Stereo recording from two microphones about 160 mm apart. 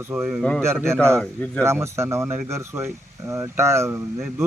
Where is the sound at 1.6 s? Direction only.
15° right (ahead or behind).